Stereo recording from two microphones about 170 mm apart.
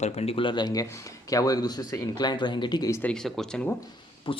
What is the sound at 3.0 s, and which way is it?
Speech, 5° left (ahead or behind).